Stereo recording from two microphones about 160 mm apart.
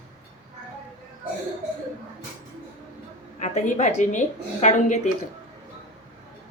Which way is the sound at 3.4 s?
50° left (ahead or behind).